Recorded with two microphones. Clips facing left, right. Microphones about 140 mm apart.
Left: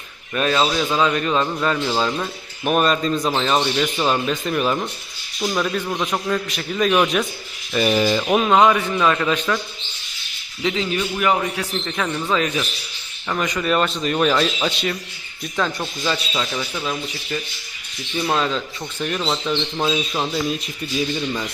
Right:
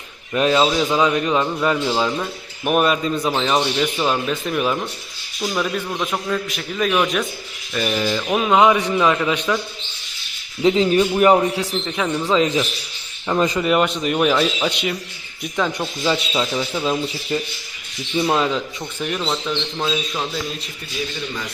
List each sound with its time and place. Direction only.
0.3 s a man's voice: 15° right (ahead or behind); by 7.3 s 5° left (ahead or behind)
7.7 s mechanisms: 10° left (ahead or behind)
8.4 s a man's voice: centre (ahead or behind)
9.0 s speech: 15° right (ahead or behind)
10.6 s a man's voice: 35° right (ahead or behind)
11.5 s a man's voice: 15° right (ahead or behind)
13.7 s speech: 15° right (ahead or behind)
16.0 s a man's voice: 20° right (ahead or behind)
18.2 s speech: 15° right (ahead or behind)
19.7 s mechanisms: 15° left (ahead or behind)